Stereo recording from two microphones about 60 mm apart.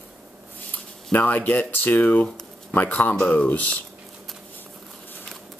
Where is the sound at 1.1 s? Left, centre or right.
Left.